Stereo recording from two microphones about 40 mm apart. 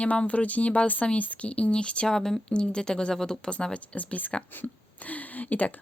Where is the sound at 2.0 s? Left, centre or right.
Centre.